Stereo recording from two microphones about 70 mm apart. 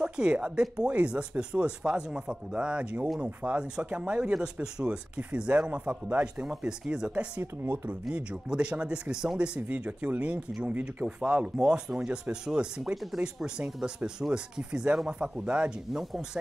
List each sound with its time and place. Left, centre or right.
0.0 s speech: centre
9.6 s speech: centre
11.1 s speech: centre